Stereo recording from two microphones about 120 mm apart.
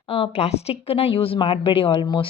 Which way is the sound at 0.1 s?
55° left (ahead or behind).